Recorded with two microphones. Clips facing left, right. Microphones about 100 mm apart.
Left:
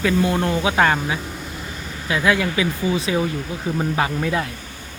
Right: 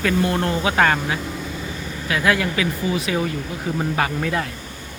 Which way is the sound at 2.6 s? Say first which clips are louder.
Left 1 dB; 25° left (ahead or behind).